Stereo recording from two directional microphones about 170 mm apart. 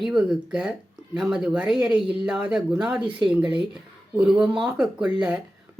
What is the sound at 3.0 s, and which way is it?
Speech, 30° right (ahead or behind).